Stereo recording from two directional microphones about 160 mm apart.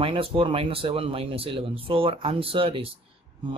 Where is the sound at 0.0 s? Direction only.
35° right (ahead or behind).